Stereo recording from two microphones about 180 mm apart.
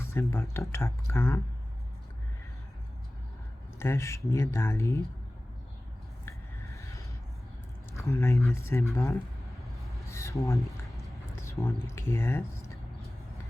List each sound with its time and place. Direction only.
0.0 s speech: 15° left (ahead or behind)
3.8 s speech: 15° left (ahead or behind)
6.7 s a sound: 15° left (ahead or behind)
7.9 s speech: 15° left (ahead or behind)